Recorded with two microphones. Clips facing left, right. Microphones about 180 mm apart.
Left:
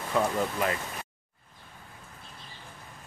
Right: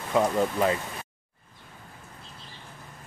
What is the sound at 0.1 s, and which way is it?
Speech, 20° right (ahead or behind).